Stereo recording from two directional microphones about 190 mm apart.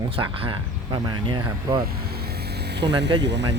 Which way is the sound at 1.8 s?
55° right (ahead or behind).